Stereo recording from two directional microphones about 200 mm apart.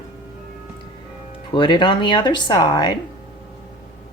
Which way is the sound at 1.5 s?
25° left (ahead or behind).